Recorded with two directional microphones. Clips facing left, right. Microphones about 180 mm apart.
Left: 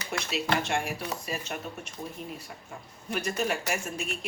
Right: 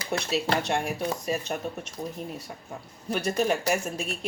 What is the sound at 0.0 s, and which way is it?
Speech, 35° right (ahead or behind).